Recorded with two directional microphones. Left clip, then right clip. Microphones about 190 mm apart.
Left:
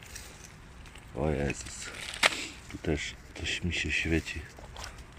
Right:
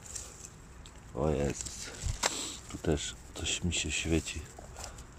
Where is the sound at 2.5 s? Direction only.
5° right (ahead or behind).